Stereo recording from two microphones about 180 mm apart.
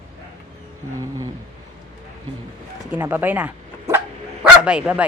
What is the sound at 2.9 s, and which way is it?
Speech, 10° right (ahead or behind).